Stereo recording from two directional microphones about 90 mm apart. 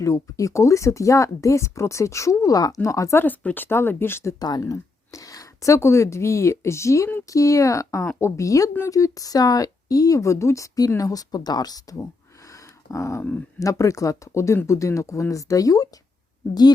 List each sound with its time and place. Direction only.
0.0 s speech: 35° left (ahead or behind)
3.2 s speech: 20° left (ahead or behind)
4.4 s speech: 50° left (ahead or behind)
12.9 s speech: 35° left (ahead or behind)